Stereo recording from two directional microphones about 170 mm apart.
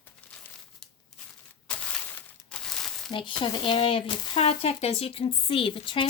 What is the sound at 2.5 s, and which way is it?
Crumpling, 5° left (ahead or behind).